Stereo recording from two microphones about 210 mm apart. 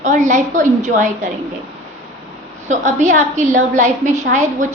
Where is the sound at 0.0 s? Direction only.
35° right (ahead or behind).